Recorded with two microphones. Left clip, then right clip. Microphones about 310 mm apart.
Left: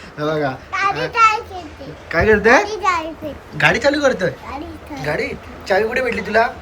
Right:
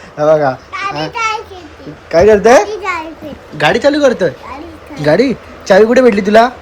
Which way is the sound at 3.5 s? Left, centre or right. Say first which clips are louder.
Right 5 dB; centre.